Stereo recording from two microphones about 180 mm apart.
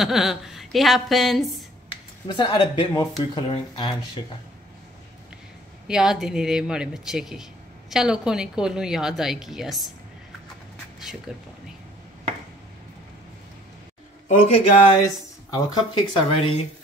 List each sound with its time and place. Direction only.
0.0 s speech: centre (ahead or behind)
2.3 s speech: 30° left (ahead or behind)
5.9 s speech: 5° right (ahead or behind)
11.3 s speech: 5° right (ahead or behind)
14.2 s speech: 30° left (ahead or behind)
15.0 s speech: 20° left (ahead or behind)